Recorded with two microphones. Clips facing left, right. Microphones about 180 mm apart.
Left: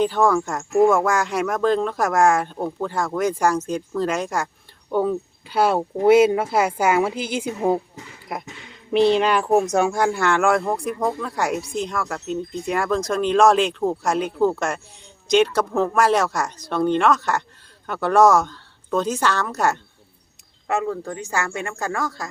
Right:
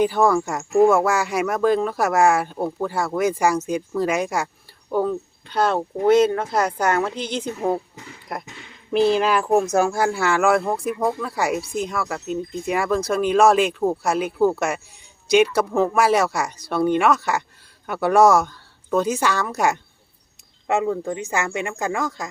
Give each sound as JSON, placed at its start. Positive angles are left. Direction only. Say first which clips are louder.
{"t": 0.0, "sound": "speech", "louder": "right 1 dB", "side_deg": -10}
{"t": 4.9, "sound": "speech", "louder": "left 1 dB", "side_deg": 0}